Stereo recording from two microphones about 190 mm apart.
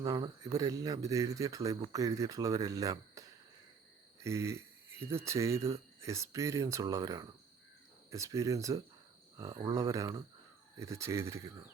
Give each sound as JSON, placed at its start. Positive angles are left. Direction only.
{"t": 0.0, "sound": "speech", "side_deg": -20}